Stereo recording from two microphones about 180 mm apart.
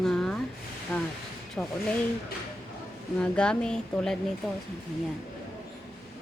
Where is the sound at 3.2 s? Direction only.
5° left (ahead or behind).